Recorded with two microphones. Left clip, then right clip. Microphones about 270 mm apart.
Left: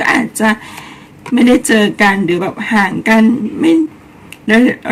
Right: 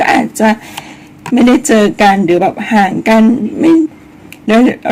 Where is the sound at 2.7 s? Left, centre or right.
Left.